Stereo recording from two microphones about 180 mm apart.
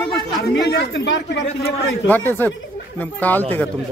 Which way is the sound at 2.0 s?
10° left (ahead or behind).